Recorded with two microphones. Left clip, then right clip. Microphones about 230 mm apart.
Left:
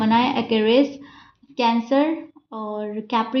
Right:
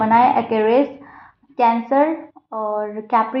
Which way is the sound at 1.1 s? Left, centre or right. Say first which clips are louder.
Right 8 dB; left.